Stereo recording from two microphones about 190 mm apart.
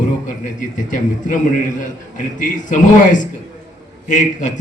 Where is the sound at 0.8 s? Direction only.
45° left (ahead or behind).